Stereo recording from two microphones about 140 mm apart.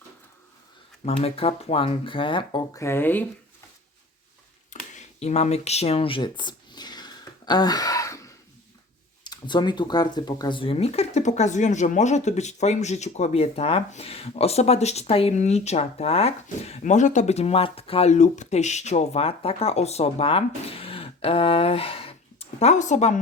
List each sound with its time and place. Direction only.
1.0 s speech: 45° left (ahead or behind)
2.7 s speech: 20° left (ahead or behind)
4.9 s a sound: 50° left (ahead or behind); by 8.3 s 20° left (ahead or behind)
9.2 s speech: 30° left (ahead or behind); by 23.2 s 55° left (ahead or behind)